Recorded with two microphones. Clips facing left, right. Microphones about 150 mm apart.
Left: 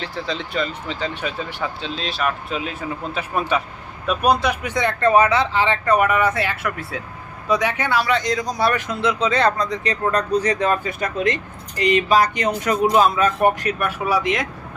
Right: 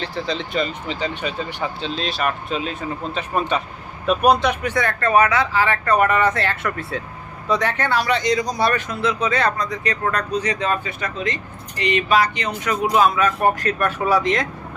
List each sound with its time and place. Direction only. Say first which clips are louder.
0.0 s speech: right 2 dB; 5° left (ahead or behind)
0.6 s speech: right 1 dB; 10° right (ahead or behind)
1.1 s speech: right 1 dB; centre (ahead or behind)
4.6 s speech: left 2 dB; 20° left (ahead or behind)
8.1 s speech: right 1 dB; centre (ahead or behind)
8.9 s speech: left 1 dB; 20° left (ahead or behind); by 11.3 s 45° left (ahead or behind)
11.8 s speech: left 2 dB; 35° left (ahead or behind)
13.6 s speech: right 2 dB; 10° left (ahead or behind)